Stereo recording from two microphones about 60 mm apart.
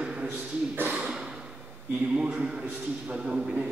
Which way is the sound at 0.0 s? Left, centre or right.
Centre.